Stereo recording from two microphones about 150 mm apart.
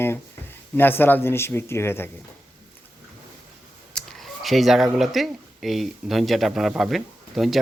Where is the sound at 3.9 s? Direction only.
5° left (ahead or behind).